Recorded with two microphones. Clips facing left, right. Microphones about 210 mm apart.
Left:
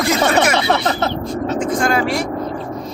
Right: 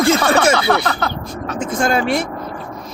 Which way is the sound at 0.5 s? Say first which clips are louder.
Even; 25° left (ahead or behind).